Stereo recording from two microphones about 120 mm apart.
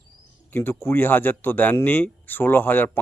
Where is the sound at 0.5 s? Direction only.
15° left (ahead or behind).